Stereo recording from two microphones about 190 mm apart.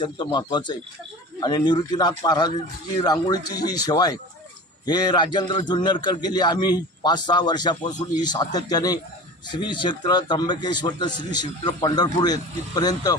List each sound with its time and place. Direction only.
0.0 s speech: 25° left (ahead or behind)